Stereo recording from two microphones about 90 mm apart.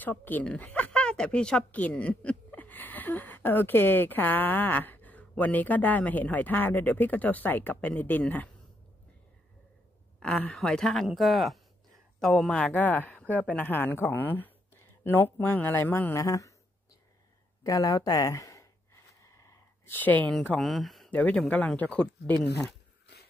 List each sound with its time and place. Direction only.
0.0 s speech: 20° left (ahead or behind)
10.2 s speech: 10° left (ahead or behind); by 16.5 s 35° left (ahead or behind)
17.6 s speech: 40° left (ahead or behind)
19.2 s a sound: 35° left (ahead or behind)
19.9 s speech: 20° left (ahead or behind)
20.5 s speech: centre (ahead or behind)
21.1 s speech: 15° left (ahead or behind)